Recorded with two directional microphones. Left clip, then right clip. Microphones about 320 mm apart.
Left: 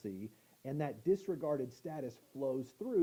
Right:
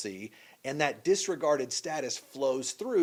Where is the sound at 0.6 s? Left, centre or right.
Centre.